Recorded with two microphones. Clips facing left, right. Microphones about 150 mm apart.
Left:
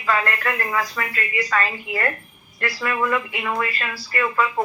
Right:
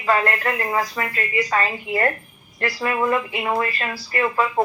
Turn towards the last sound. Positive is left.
turn(degrees=-30)  # may be behind; listen again after turning